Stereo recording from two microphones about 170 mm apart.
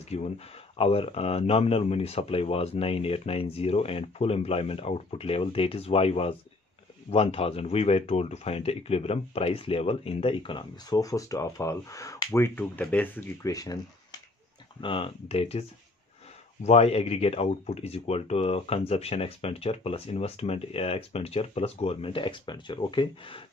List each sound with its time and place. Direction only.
0.0 s speech: 40° left (ahead or behind); by 13.5 s 10° left (ahead or behind)
13.5 s speech: 20° left (ahead or behind)
14.8 s speech: 30° left (ahead or behind)
16.6 s speech: 35° left (ahead or behind)